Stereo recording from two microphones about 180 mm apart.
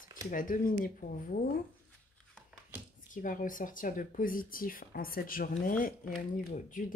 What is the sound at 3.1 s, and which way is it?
Speech, 50° left (ahead or behind).